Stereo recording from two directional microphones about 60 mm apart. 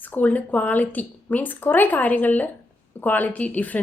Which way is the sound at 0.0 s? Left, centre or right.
Left.